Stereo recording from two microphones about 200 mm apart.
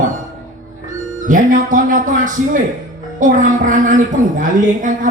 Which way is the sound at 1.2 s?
40° right (ahead or behind).